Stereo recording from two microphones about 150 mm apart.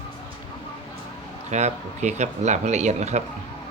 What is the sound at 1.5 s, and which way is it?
Speech, 50° right (ahead or behind).